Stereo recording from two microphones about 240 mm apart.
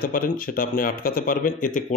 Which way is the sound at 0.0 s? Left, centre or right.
Left.